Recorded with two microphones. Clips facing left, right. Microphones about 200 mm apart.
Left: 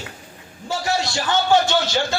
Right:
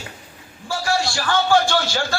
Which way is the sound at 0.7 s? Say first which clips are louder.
Right 1 dB; 20° left (ahead or behind).